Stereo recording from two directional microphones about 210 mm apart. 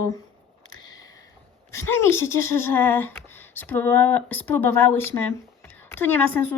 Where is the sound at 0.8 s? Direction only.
15° left (ahead or behind).